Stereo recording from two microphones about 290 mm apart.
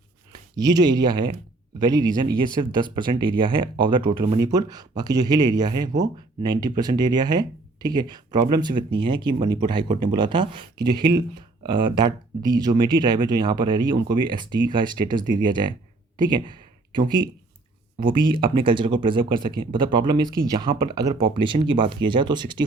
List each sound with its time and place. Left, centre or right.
0.5 s speech: centre
16.1 s a sound: centre
18.0 s speech: centre